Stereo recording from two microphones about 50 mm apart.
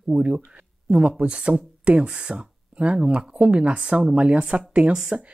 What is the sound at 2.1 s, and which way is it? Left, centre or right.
Speech, centre.